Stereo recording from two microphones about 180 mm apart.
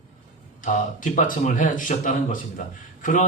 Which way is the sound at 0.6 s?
45° left (ahead or behind).